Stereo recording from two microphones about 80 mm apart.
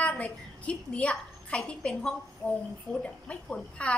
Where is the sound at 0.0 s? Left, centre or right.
Centre.